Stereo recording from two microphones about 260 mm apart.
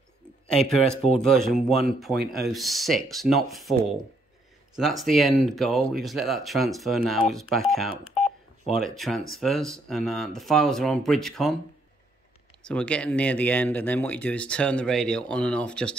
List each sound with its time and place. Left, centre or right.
0.5 s speech: centre
12.6 s speech: centre